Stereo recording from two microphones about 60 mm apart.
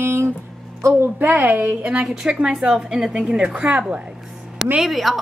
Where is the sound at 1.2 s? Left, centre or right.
Right.